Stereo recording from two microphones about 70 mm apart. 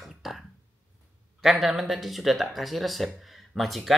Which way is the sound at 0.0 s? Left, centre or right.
Centre.